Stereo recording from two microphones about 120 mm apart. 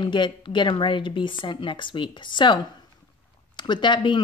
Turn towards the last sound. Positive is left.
turn(degrees=40)  # may be behind; listen again after turning